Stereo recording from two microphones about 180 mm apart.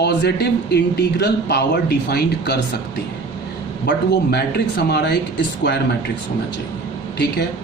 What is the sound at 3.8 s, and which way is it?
Speech, 65° left (ahead or behind).